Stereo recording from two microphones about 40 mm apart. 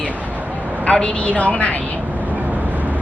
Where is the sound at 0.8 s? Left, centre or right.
Left.